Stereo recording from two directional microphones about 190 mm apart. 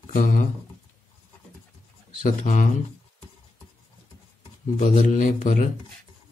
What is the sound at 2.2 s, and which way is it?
Speech, 40° left (ahead or behind).